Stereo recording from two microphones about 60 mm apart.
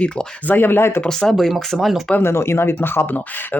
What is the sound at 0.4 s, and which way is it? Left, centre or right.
Speech, left.